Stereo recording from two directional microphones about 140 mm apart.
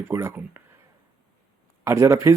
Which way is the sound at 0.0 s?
15° right (ahead or behind).